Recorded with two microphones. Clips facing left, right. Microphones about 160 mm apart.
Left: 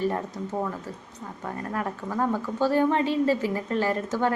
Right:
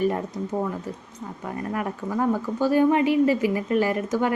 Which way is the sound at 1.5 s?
10° right (ahead or behind).